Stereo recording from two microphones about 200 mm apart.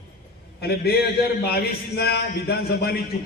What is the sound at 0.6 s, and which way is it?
A man's voice, 50° left (ahead or behind).